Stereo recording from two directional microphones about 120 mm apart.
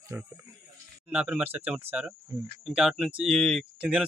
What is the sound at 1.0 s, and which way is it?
Speech, 10° right (ahead or behind).